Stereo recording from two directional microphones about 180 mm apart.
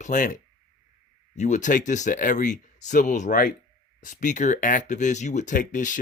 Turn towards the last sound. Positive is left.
turn(degrees=45)  # may be behind; listen again after turning